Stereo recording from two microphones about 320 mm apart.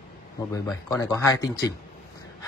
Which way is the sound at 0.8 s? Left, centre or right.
Centre.